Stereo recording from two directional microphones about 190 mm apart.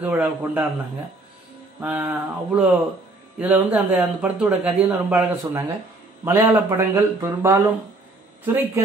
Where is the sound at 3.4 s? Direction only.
10° right (ahead or behind).